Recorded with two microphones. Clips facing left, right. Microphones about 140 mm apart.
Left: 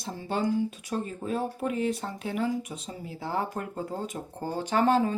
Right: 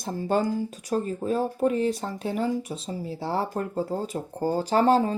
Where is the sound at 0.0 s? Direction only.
45° right (ahead or behind).